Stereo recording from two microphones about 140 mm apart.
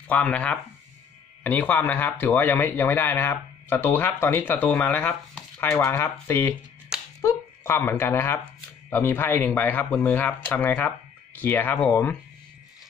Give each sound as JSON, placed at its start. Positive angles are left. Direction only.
{"t": 0.1, "sound": "speech", "side_deg": 10}